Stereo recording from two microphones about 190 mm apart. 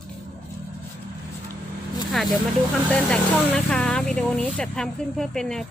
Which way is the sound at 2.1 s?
Centre (ahead or behind).